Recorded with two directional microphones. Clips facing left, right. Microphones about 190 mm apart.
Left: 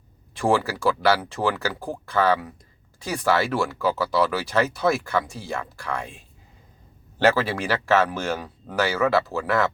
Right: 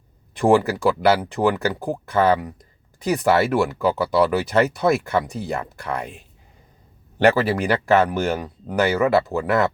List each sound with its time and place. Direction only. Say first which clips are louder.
0.3 s speech: right 5 dB; 15° right (ahead or behind)
7.2 s speech: right 3 dB; 15° right (ahead or behind)